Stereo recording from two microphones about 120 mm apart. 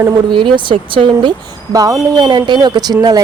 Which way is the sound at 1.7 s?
30° right (ahead or behind).